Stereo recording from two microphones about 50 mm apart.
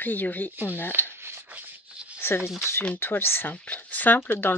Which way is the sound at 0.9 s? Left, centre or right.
Right.